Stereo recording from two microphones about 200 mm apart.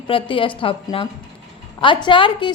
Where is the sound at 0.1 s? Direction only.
25° left (ahead or behind).